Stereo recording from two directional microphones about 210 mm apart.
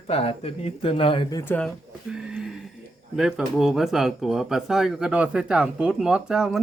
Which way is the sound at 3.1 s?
Centre (ahead or behind).